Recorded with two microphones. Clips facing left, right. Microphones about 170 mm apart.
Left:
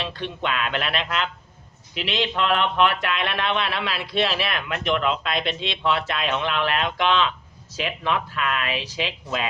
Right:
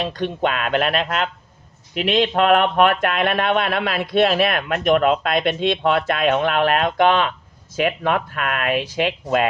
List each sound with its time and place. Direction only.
0.0 s speech: 45° right (ahead or behind)